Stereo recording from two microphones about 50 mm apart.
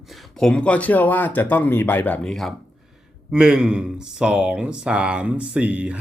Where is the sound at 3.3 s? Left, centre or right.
Centre.